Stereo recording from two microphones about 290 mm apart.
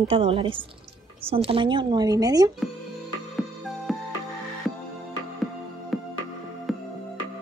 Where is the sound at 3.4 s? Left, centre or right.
Centre.